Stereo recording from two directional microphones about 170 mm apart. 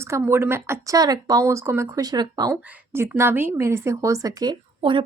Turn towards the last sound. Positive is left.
turn(degrees=-25)  # may be behind; listen again after turning